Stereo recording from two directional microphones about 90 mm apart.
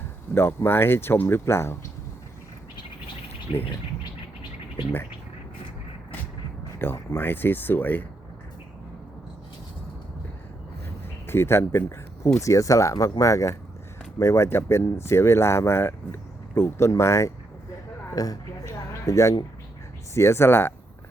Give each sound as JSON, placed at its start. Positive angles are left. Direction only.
{"t": 0.3, "sound": "speech", "side_deg": 25}
{"t": 3.5, "sound": "speech", "side_deg": 90}
{"t": 6.7, "sound": "speech", "side_deg": 30}
{"t": 10.8, "sound": "a sound", "side_deg": 25}
{"t": 12.4, "sound": "speech", "side_deg": 35}
{"t": 18.1, "sound": "speech", "side_deg": 40}
{"t": 18.9, "sound": "a sound", "side_deg": 35}
{"t": 20.1, "sound": "speech", "side_deg": 30}